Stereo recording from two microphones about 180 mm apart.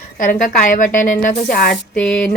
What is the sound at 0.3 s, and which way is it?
Speech, 45° left (ahead or behind).